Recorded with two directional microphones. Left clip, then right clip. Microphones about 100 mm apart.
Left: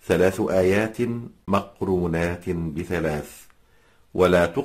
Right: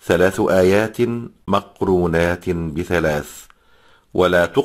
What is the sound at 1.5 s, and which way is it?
Speech, 50° right (ahead or behind).